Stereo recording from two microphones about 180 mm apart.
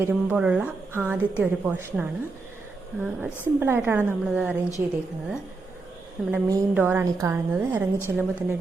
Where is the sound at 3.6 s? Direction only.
10° right (ahead or behind).